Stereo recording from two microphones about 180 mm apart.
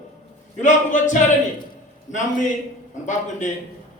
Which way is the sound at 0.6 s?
45° left (ahead or behind).